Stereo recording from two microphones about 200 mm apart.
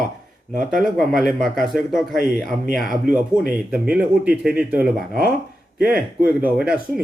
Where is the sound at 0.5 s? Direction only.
45° right (ahead or behind).